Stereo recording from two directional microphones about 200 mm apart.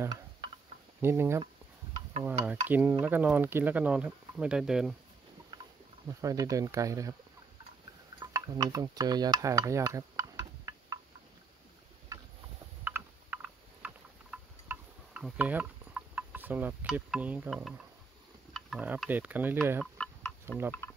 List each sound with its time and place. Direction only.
0.0 s a sound: 20° right (ahead or behind)
1.0 s speech: 10° right (ahead or behind)
6.0 s speech: 15° right (ahead or behind)
8.2 s stir: 20° right (ahead or behind)
12.8 s a sound: 10° right (ahead or behind)
18.5 s speech: 5° right (ahead or behind)
19.8 s tick-tock: 5° left (ahead or behind)
20.4 s speech: 10° right (ahead or behind)